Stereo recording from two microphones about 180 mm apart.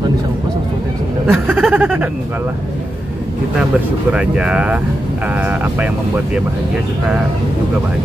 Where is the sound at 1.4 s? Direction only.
10° right (ahead or behind).